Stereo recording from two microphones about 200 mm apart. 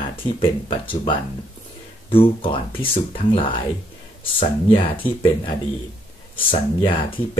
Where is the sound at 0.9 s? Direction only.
25° left (ahead or behind).